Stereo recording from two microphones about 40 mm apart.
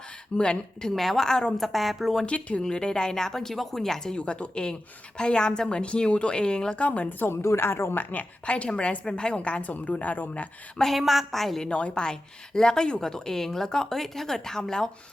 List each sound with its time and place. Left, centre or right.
0.3 s a woman's voice: left
0.9 s a woman's voice: centre
2.2 s a woman's voice: left
2.6 s speech: centre
4.2 s a woman's voice: left
6.7 s a woman's voice: left
7.3 s a woman's voice: left
8.1 s a woman's voice: left
9.6 s a woman's voice: left
10.9 s a woman's voice: centre
11.7 s a woman's voice: left